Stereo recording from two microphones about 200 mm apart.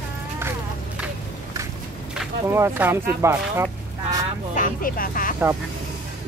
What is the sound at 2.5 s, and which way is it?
Speech, 10° right (ahead or behind).